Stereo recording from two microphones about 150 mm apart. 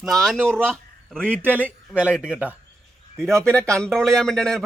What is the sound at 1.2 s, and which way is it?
A man's voice, 10° right (ahead or behind).